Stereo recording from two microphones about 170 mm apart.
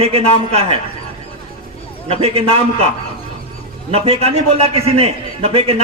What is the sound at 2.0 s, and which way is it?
Speech, 35° right (ahead or behind).